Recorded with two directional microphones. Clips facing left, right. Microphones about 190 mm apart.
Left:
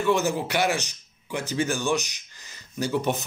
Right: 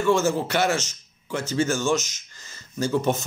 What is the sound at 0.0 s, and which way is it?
Speech, 15° left (ahead or behind).